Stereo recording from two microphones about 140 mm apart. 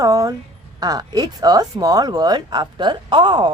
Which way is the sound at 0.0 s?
25° right (ahead or behind).